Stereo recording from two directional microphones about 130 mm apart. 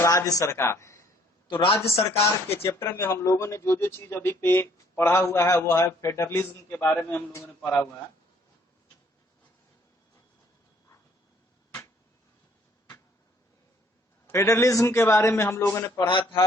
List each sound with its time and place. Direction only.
0.0 s speech: 25° left (ahead or behind)
1.5 s a man's voice: 40° left (ahead or behind)
1.9 s speech: 20° left (ahead or behind)
14.3 s speech: 20° left (ahead or behind)